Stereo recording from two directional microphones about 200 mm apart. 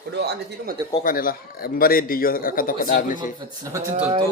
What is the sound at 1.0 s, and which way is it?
Speech, 45° left (ahead or behind).